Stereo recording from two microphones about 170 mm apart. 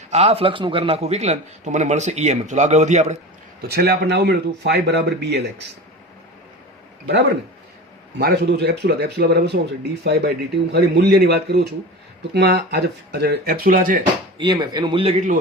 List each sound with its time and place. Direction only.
0.1 s a man's voice: 35° right (ahead or behind)
3.7 s speech: 70° right (ahead or behind); by 5.6 s 90° right
8.2 s a man's voice: 75° right (ahead or behind); by 14.0 s 50° right (ahead or behind)
14.3 s speech: 25° right (ahead or behind)